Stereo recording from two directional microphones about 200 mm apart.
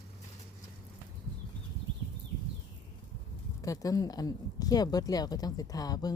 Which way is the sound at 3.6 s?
15° left (ahead or behind).